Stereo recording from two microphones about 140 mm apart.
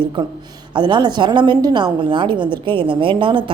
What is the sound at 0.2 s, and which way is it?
A woman's voice, 35° right (ahead or behind).